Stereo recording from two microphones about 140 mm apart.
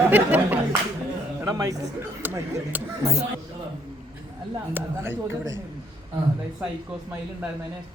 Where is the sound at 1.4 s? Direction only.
25° right (ahead or behind).